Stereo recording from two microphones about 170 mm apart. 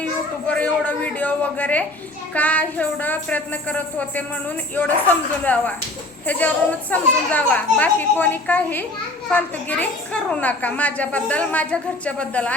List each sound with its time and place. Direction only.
0.4 s a woman's voice: 10° left (ahead or behind)